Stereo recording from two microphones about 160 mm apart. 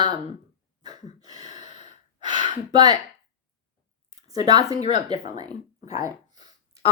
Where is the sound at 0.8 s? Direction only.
25° right (ahead or behind).